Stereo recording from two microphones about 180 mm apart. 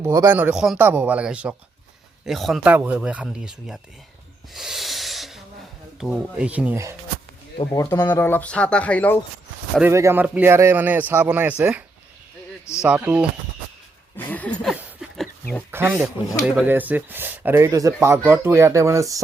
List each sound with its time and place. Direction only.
0.0 s speech: 15° right (ahead or behind)
4.5 s snort: centre (ahead or behind)
6.0 s speech: 5° right (ahead or behind)
7.7 s speech: 15° left (ahead or behind)
9.8 s speech: 15° right (ahead or behind)
12.8 s speech: 5° right (ahead or behind)
14.2 s a sound: 10° left (ahead or behind)
15.7 s speech: 15° right (ahead or behind)